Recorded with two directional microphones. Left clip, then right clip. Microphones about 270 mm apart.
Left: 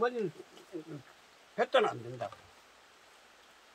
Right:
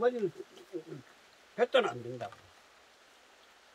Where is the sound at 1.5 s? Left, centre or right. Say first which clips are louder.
Even; centre.